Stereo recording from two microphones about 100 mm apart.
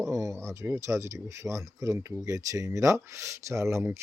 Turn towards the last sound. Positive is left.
turn(degrees=-30)  # may be behind; listen again after turning